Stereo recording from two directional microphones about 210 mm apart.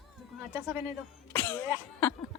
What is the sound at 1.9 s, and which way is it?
Speech, 10° left (ahead or behind).